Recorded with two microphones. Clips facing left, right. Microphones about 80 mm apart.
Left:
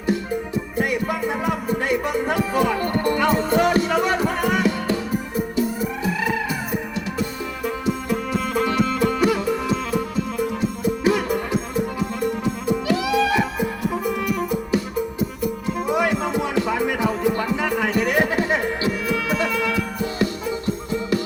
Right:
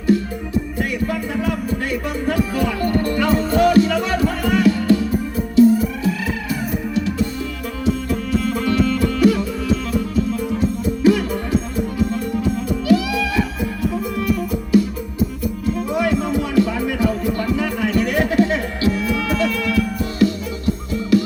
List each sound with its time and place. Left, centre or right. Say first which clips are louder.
1.4 s music: right 1 dB; left
7.9 s music: right 5 dB; centre
11.0 s music: right 5 dB; left
12.9 s music: right 3 dB; left
15.9 s music: even; left